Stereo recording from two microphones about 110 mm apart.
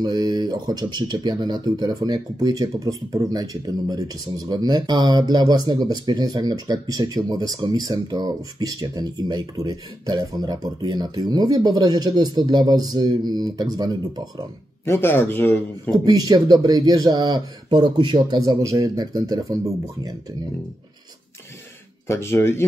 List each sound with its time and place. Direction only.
0.0 s speech: 40° right (ahead or behind)
14.9 s speech: 20° left (ahead or behind)
15.9 s speech: 35° right (ahead or behind)
22.0 s speech: 25° left (ahead or behind)